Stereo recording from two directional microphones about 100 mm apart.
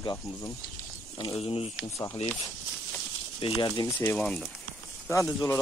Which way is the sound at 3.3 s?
80° left.